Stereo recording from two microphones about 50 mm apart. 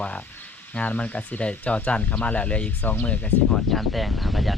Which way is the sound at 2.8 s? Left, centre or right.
Left.